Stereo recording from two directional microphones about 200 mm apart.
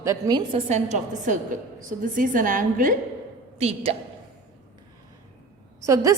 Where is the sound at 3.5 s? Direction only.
30° right (ahead or behind).